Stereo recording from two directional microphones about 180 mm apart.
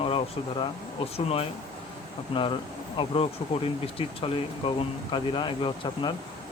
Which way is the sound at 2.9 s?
30° left (ahead or behind).